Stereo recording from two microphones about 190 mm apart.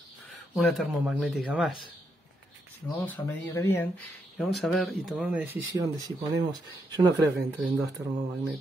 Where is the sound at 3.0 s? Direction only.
10° left (ahead or behind).